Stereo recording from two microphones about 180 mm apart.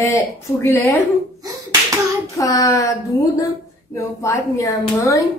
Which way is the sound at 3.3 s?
15° left (ahead or behind).